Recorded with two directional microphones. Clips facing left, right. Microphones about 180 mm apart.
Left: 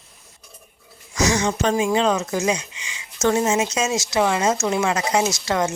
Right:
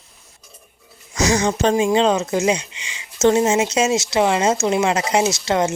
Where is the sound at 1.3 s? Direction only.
35° right (ahead or behind).